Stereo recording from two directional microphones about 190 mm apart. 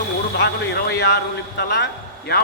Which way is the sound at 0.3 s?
55° left (ahead or behind).